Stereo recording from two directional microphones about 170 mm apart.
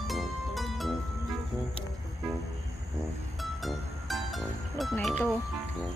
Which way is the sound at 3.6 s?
Centre (ahead or behind).